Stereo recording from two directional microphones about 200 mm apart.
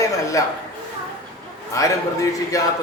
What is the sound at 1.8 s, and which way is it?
Speech, 15° left (ahead or behind).